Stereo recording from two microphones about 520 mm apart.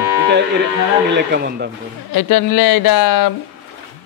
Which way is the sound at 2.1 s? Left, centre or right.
Left.